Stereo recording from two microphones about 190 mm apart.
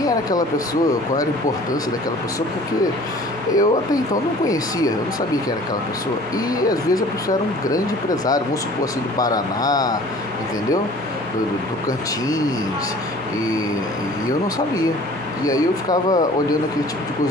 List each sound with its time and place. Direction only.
0.0 s speech: 20° left (ahead or behind)
3.5 s speech: 20° left (ahead or behind)
6.3 s speech: 20° left (ahead or behind)
11.9 s speech: 20° left (ahead or behind)
15.4 s speech: 20° left (ahead or behind)